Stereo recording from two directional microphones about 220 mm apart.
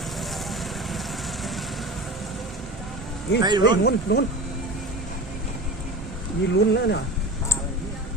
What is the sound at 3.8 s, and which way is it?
Speech, 50° left (ahead or behind).